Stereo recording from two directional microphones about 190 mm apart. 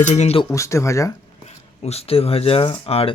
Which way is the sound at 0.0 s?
35° left (ahead or behind).